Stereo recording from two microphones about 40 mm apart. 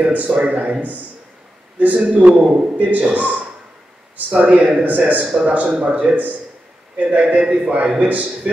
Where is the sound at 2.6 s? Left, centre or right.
Right.